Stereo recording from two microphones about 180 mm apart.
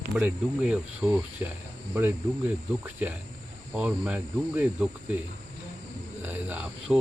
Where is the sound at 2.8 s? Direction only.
10° right (ahead or behind).